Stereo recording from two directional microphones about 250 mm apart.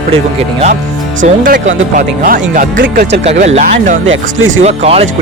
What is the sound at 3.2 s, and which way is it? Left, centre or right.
Speech, right.